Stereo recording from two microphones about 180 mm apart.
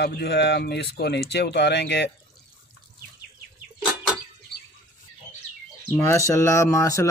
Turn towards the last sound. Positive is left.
turn(degrees=20)  # may be behind; listen again after turning